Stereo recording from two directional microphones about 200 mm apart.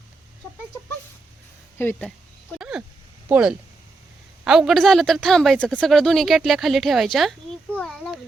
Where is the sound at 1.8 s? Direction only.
10° left (ahead or behind).